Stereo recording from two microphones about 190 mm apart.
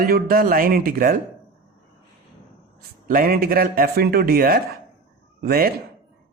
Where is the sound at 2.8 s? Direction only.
50° right (ahead or behind).